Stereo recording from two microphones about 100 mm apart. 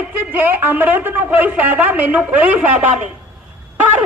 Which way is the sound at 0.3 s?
20° right (ahead or behind).